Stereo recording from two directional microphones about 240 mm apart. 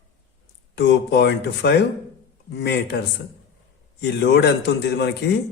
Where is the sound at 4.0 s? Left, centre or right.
Left.